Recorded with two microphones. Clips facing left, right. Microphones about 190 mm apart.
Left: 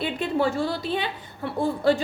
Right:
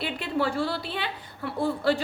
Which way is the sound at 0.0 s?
20° left (ahead or behind).